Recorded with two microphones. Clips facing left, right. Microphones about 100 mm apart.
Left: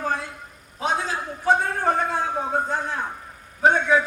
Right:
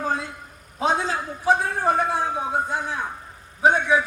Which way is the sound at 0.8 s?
30° right (ahead or behind).